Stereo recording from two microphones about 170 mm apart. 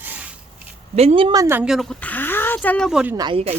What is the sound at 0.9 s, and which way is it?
Speech, 40° right (ahead or behind).